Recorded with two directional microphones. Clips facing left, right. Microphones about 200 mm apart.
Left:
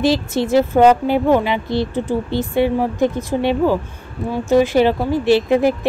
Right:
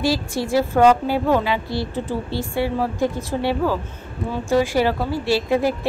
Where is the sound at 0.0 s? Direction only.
20° left (ahead or behind).